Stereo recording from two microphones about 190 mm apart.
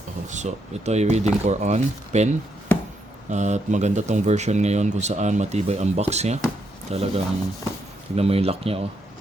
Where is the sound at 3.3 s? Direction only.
40° right (ahead or behind).